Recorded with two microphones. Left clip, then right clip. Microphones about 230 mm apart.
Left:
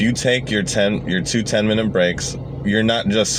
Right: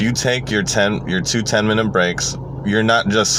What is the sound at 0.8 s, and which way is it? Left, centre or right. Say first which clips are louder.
Speech: even; right.